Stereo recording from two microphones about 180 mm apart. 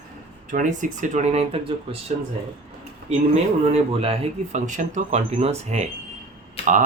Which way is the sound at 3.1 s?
35° right (ahead or behind).